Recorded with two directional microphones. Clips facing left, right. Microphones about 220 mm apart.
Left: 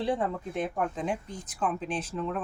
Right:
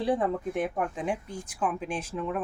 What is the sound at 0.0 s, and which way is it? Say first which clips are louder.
Speech: right 3 dB; 15° right (ahead or behind).